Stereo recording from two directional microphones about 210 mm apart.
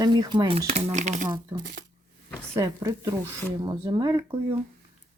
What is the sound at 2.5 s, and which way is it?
Speech, 15° right (ahead or behind).